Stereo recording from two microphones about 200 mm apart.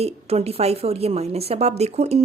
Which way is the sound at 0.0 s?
30° right (ahead or behind).